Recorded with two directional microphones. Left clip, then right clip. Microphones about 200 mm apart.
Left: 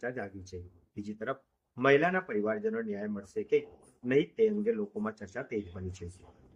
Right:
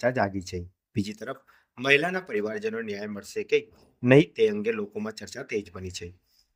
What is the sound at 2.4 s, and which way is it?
A man's voice, 60° right (ahead or behind).